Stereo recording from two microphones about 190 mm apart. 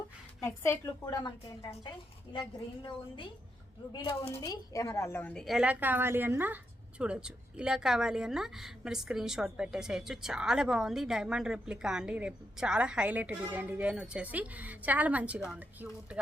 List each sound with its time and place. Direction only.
0.4 s a woman's voice: 15° left (ahead or behind); by 16.2 s 5° right (ahead or behind)